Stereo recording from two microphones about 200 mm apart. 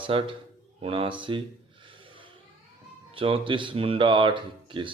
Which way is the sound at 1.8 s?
25° right (ahead or behind).